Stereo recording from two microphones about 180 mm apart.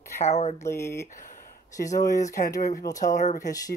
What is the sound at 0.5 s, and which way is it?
Speech, 15° left (ahead or behind).